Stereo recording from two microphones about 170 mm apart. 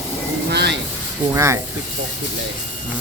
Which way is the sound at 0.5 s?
80° right.